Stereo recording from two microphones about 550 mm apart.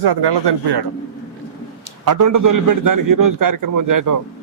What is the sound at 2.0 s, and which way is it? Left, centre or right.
A man's voice, right.